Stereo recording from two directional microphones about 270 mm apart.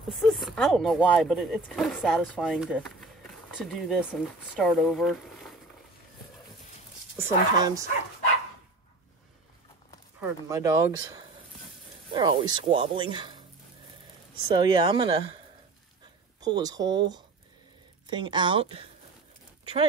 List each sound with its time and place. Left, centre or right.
0.1 s speech: centre
7.2 s speech: centre
10.5 s speech: centre
12.1 s speech: centre
14.5 s speech: centre
16.3 s speech: centre
18.0 s speech: centre